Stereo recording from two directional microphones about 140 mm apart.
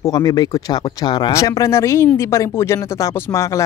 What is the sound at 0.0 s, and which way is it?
Speech, 30° left (ahead or behind).